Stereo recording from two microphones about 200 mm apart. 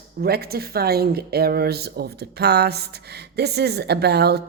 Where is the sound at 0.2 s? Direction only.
50° right (ahead or behind).